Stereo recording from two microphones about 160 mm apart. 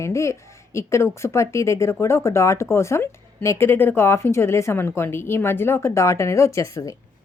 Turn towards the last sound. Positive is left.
turn(degrees=20)  # may be behind; listen again after turning